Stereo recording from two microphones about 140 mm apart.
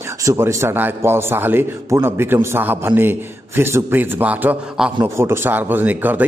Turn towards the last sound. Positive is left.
turn(degrees=-10)  # may be behind; listen again after turning